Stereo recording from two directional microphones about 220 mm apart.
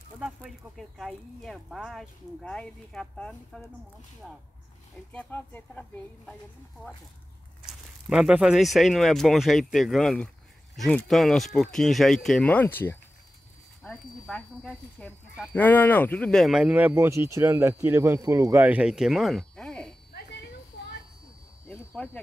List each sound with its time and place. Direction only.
0.2 s speech: centre (ahead or behind)
5.1 s speech: 10° left (ahead or behind)
7.6 s speech: 5° right (ahead or behind)
13.8 s speech: centre (ahead or behind)
21.9 s speech: 5° left (ahead or behind)